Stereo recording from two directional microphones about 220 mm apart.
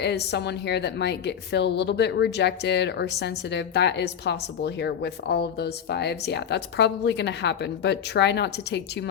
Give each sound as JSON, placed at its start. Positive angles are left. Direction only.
{"t": 0.0, "sound": "a woman's voice", "side_deg": 50}